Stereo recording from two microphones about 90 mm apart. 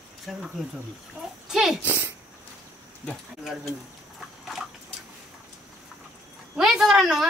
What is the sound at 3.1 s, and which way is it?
Speech, 5° right (ahead or behind).